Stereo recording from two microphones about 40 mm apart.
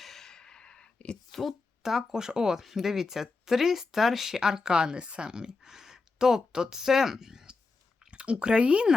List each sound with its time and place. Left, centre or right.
0.0 s a sound: centre; by 1.2 s left
1.3 s speech: centre
1.8 s speech: centre
8.1 s speech: right